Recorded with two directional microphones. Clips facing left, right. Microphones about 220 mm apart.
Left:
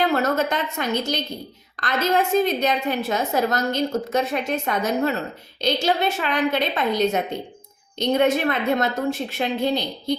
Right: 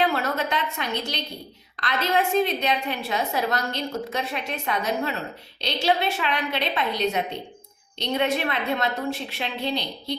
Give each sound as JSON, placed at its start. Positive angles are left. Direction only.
{"t": 0.1, "sound": "a woman's voice", "side_deg": 45}